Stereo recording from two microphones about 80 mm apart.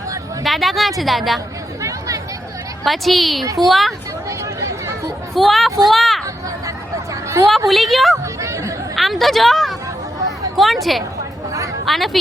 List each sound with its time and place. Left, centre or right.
0.4 s a woman's voice: centre
1.8 s chatter: right
2.8 s a woman's voice: centre
4.3 s chatter: right
5.3 s a woman's voice: centre
6.2 s hubbub: right
7.7 s a woman's voice: centre
8.1 s a sound: right
9.0 s a woman's voice: centre
11.9 s a woman's voice: centre